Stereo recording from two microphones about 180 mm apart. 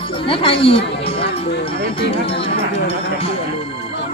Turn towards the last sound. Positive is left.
turn(degrees=35)  # may be behind; listen again after turning